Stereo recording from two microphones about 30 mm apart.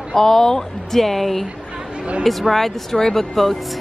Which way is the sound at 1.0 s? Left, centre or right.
Centre.